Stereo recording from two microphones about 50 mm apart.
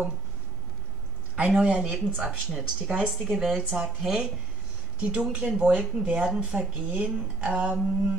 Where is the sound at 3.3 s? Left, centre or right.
Centre.